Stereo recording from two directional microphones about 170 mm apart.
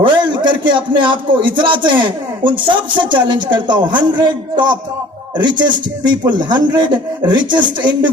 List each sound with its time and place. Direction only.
0.0 s a man's voice: 30° right (ahead or behind)